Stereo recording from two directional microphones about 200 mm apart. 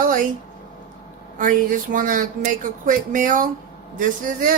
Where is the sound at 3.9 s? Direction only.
40° right (ahead or behind).